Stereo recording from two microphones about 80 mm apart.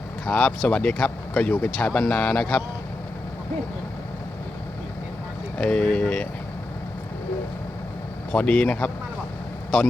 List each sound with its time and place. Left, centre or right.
0.3 s speech: centre
5.5 s speech: centre
8.3 s speech: centre